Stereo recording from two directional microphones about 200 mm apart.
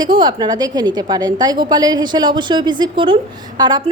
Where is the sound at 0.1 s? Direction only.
20° right (ahead or behind).